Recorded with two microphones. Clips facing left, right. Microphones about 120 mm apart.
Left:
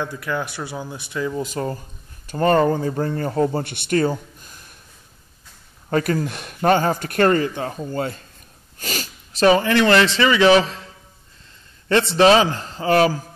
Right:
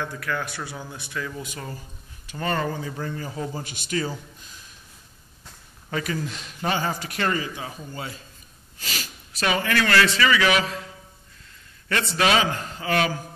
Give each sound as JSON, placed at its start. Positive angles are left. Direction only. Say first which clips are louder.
{"t": 0.0, "sound": "speech", "louder": "left 4 dB", "side_deg": 20}
{"t": 1.3, "sound": "a man's voice", "louder": "left 10 dB", "side_deg": 40}
{"t": 5.9, "sound": "speech", "louder": "left 8 dB", "side_deg": 45}
{"t": 11.9, "sound": "a man's voice", "louder": "left 8 dB", "side_deg": 30}